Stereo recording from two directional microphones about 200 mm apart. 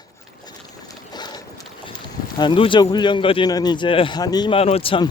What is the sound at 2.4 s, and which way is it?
A man's voice, 25° left (ahead or behind).